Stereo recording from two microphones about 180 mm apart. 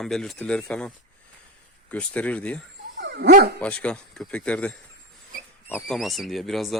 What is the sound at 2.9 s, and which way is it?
Dog, 70° right (ahead or behind).